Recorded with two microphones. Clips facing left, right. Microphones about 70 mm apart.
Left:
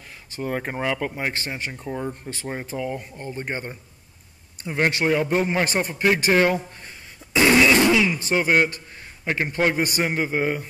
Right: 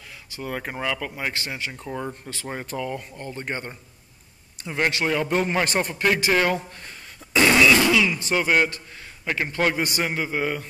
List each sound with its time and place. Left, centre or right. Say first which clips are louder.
0.3 s speech: left 4 dB; left
2.5 s a man's voice: left 1 dB; centre
7.3 s fart: left 1 dB; centre
7.6 s fart: left 1 dB; left
8.2 s a man's voice: left 1 dB; left